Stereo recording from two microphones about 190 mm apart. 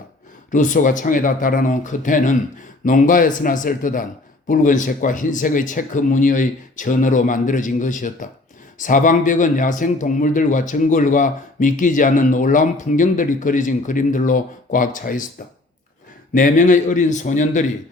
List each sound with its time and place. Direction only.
0.5 s speech: 40° left (ahead or behind)
16.3 s a man's voice: 45° left (ahead or behind)